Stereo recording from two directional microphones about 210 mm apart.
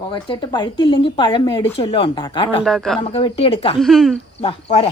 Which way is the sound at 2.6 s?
Centre (ahead or behind).